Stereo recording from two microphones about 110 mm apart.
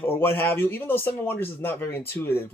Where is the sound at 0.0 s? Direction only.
20° left (ahead or behind).